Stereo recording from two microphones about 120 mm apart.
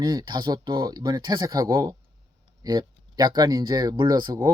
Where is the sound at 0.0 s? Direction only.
35° right (ahead or behind).